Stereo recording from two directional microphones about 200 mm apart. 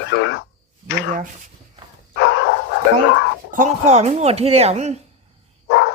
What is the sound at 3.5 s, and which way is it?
Speech, 35° right (ahead or behind).